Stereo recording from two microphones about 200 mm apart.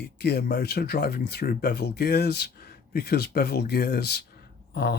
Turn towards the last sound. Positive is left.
turn(degrees=55)  # may be behind; listen again after turning